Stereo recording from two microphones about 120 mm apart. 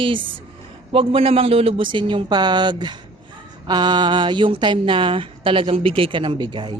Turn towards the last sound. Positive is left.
turn(degrees=-45)  # may be behind; listen again after turning